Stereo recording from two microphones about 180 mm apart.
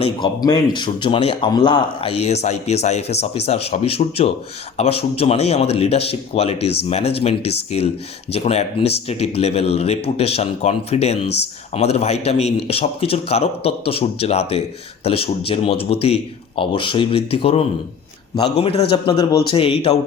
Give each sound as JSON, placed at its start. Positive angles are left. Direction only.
{"t": 0.0, "sound": "a man's voice", "side_deg": 25}